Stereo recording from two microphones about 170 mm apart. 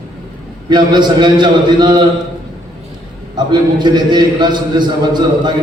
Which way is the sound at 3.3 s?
25° right (ahead or behind).